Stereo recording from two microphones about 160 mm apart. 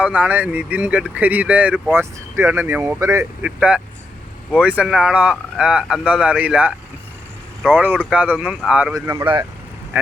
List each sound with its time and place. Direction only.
0.0 s speech: 10° right (ahead or behind)
7.8 s speech: 10° right (ahead or behind)
9.0 s speech: 20° right (ahead or behind)
9.9 s speech: 10° right (ahead or behind)